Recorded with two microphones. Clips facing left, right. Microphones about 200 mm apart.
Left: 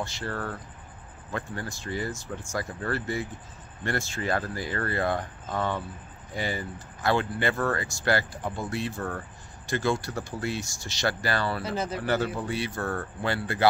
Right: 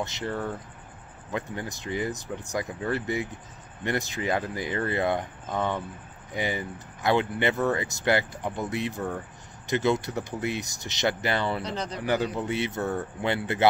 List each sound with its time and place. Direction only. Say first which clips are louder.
0.0 s speech: right 2 dB; 20° right (ahead or behind)
11.6 s speech: left 2 dB; 5° left (ahead or behind)
12.0 s speech: right 3 dB; 15° right (ahead or behind)